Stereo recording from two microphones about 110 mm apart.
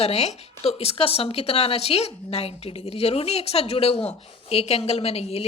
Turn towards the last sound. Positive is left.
turn(degrees=70)  # may be behind; listen again after turning